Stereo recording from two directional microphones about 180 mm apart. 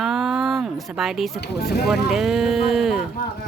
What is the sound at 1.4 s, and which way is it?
Speech, 60° left (ahead or behind).